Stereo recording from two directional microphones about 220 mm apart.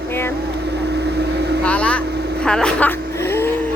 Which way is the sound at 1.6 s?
5° left (ahead or behind).